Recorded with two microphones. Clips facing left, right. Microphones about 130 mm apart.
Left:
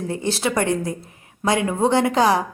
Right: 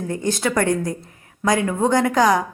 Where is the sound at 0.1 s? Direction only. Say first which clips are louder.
Right 1 dB; 30° left (ahead or behind).